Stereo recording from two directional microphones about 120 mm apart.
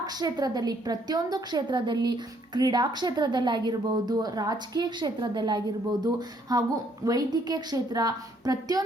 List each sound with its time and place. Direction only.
0.0 s a woman's voice: 35° right (ahead or behind)